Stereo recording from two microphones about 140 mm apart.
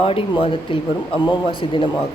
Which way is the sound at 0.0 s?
40° left (ahead or behind).